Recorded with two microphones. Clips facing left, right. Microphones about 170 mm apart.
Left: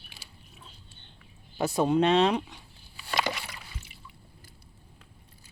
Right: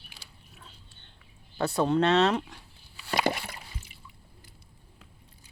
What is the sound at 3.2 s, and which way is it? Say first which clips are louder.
Water: right 5 dB; 50° right (ahead or behind).